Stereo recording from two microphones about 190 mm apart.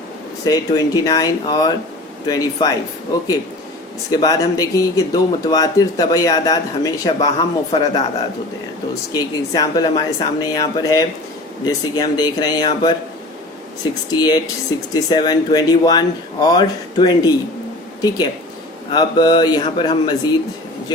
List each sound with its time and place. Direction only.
0.4 s speech: 20° left (ahead or behind)
4.1 s speech: 20° left (ahead or behind)
9.1 s speech: 20° left (ahead or behind)
14.1 s speech: 20° left (ahead or behind)
18.9 s speech: 25° left (ahead or behind)